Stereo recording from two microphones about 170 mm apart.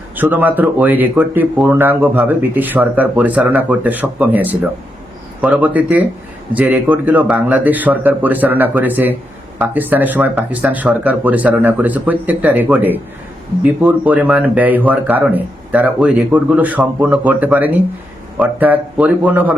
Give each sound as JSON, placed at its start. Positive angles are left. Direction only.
{"t": 0.2, "sound": "speech", "side_deg": -10}